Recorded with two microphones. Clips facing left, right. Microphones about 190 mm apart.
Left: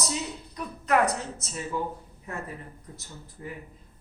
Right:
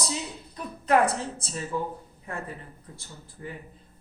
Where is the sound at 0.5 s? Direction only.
30° right (ahead or behind).